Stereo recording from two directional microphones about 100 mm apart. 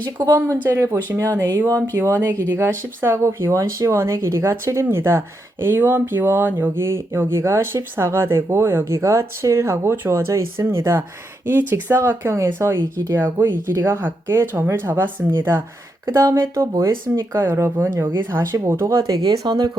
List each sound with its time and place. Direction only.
0.3 s speech: 30° right (ahead or behind)